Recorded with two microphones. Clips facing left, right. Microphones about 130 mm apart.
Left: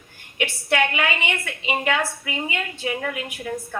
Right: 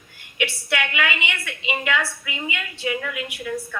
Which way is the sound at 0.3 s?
40° left (ahead or behind).